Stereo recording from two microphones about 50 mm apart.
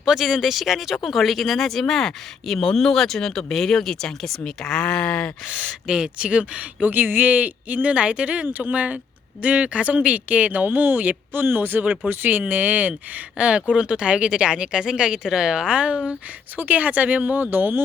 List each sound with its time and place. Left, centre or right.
0.0 s speech: centre; by 5.6 s left
5.9 s speech: centre
6.8 s speech: right
7.3 s speech: right
8.4 s speech: right
16.6 s speech: right